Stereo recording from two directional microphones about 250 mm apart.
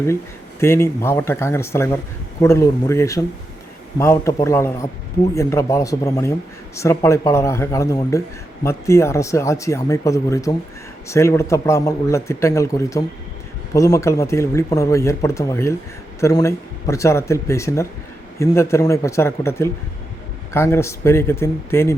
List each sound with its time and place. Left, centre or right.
0.6 s speech: centre